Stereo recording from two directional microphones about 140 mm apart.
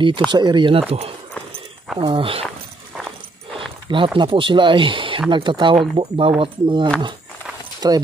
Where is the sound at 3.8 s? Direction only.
35° right (ahead or behind).